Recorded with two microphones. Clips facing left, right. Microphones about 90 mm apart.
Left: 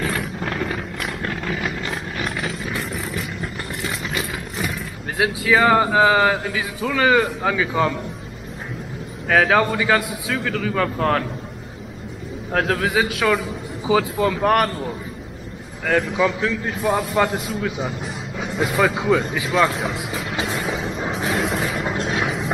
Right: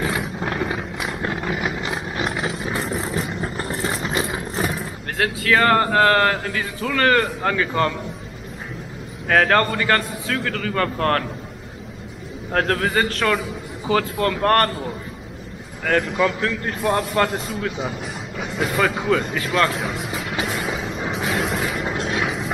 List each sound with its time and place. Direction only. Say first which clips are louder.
0.0 s vehicle: right 1 dB; 15° right (ahead or behind); by 4.8 s 35° right (ahead or behind)
5.1 s speech: left 1 dB; 10° left (ahead or behind)
9.3 s speech: even; 5° left (ahead or behind)
12.5 s speech: even; centre (ahead or behind)
20.1 s music: even; centre (ahead or behind)
20.4 s a sound: left 1 dB; centre (ahead or behind)